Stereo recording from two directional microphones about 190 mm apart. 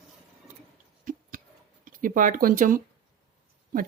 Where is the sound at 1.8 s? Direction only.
45° right (ahead or behind).